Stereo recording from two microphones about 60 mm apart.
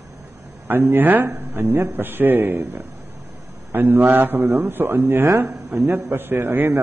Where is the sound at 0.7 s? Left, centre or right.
Right.